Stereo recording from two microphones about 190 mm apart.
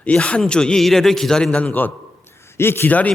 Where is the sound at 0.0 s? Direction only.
5° left (ahead or behind).